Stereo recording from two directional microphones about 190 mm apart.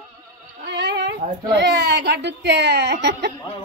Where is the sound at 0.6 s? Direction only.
65° right (ahead or behind).